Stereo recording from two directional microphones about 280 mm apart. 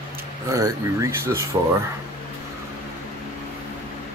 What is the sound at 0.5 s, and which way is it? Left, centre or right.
Speech, centre.